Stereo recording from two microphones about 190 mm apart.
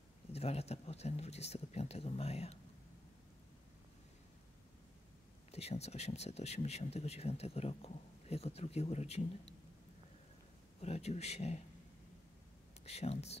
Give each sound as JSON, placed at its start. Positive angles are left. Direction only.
{"t": 0.3, "sound": "speech", "side_deg": 35}
{"t": 5.5, "sound": "speech", "side_deg": 35}
{"t": 10.8, "sound": "speech", "side_deg": 35}
{"t": 12.8, "sound": "speech", "side_deg": 35}